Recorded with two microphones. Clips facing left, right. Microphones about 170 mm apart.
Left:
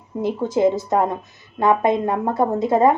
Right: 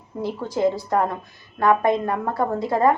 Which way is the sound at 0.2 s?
20° left (ahead or behind).